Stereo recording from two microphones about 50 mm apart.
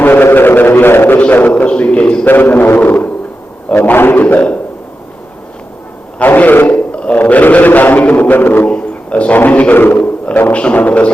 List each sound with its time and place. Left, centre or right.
0.0 s a sound: left
1.3 s a man's voice: left
1.6 s a man's voice: left
2.2 s a man's voice: left
4.2 s a man's voice: left
6.2 s a man's voice: left
6.7 s a sound: left
7.2 s a man's voice: left
8.7 s a sound: left
9.3 s a man's voice: left
10.5 s a man's voice: left